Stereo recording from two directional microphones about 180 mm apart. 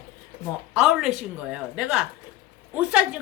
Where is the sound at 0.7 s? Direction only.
5° right (ahead or behind).